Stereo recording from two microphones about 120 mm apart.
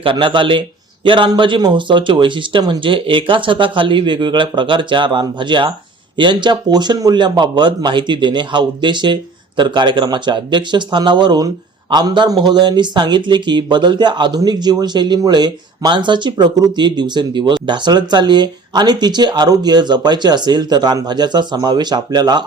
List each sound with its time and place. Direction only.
0.0 s speech: 45° right (ahead or behind)